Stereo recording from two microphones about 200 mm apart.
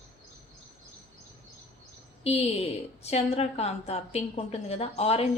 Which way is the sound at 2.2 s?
30° left (ahead or behind).